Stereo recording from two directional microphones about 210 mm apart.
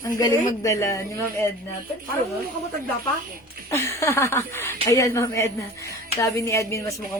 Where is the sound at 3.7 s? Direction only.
15° left (ahead or behind).